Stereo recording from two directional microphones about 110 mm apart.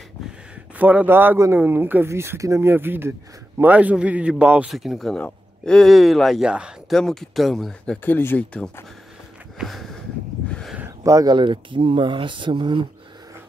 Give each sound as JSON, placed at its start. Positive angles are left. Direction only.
{"t": 0.7, "sound": "speech", "side_deg": -15}
{"t": 3.7, "sound": "speech", "side_deg": -10}
{"t": 4.6, "sound": "speech", "side_deg": 0}
{"t": 6.9, "sound": "speech", "side_deg": 5}
{"t": 8.0, "sound": "speech", "side_deg": 20}
{"t": 9.6, "sound": "a sound", "side_deg": 0}
{"t": 11.1, "sound": "speech", "side_deg": -30}
{"t": 11.3, "sound": "speech", "side_deg": -50}